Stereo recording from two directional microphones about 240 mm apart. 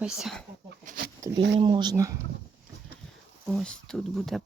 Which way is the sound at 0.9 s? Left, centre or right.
Right.